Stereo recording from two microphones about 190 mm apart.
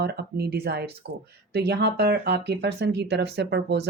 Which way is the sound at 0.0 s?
60° right (ahead or behind).